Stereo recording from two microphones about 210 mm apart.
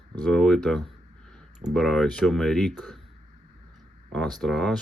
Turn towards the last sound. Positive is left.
turn(degrees=0)  # may be behind; listen again after turning